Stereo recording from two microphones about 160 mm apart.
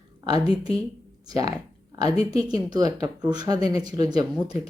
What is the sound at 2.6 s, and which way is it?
Speech, 25° right (ahead or behind).